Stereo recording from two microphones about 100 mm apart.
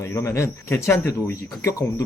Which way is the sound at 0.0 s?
30° left (ahead or behind).